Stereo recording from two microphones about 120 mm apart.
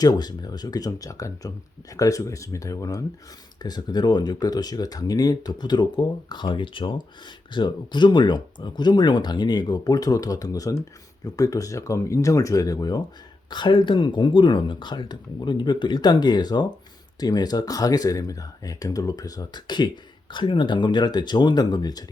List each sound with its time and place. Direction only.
0.0 s speech: 35° left (ahead or behind)